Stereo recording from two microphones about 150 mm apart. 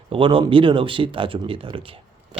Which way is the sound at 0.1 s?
35° right (ahead or behind).